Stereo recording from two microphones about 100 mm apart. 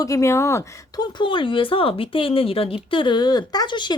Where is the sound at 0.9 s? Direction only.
50° left (ahead or behind).